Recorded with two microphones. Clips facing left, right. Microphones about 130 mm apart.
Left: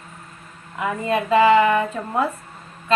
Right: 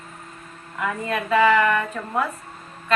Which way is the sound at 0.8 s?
25° left (ahead or behind).